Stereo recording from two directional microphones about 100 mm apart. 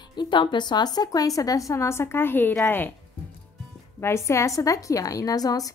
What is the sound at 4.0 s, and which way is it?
A woman's voice, 30° left (ahead or behind).